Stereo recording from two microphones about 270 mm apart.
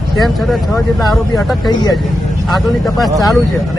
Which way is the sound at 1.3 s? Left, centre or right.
Centre.